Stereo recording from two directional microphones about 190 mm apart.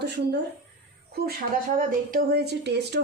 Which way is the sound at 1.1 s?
55° right (ahead or behind).